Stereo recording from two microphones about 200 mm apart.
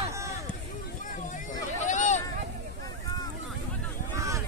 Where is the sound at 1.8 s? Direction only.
35° left (ahead or behind).